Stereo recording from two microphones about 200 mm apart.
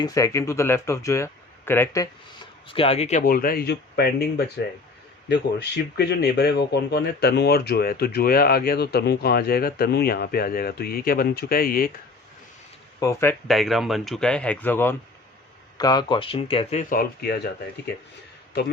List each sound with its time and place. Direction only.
0.0 s speech: 15° left (ahead or behind)
2.6 s speech: 30° left (ahead or behind); by 11.9 s 45° left (ahead or behind)
13.0 s speech: 15° left (ahead or behind)
13.5 s speech: centre (ahead or behind)
15.8 s speech: 20° left (ahead or behind)
16.9 s speech: 50° left (ahead or behind)